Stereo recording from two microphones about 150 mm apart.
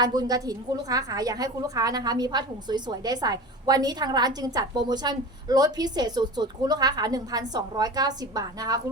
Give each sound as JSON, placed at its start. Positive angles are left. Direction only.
{"t": 0.0, "sound": "a woman's voice", "side_deg": -25}